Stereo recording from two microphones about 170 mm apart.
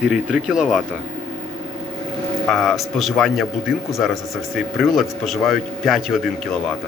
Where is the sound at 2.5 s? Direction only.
5° left (ahead or behind).